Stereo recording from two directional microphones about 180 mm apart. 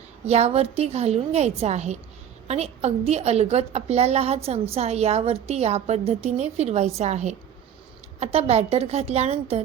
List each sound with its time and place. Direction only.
0.3 s a woman's voice: 35° right (ahead or behind)